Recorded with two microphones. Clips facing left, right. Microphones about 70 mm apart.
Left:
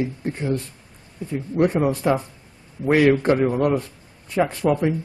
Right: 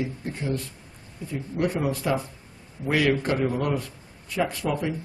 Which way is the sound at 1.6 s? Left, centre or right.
Left.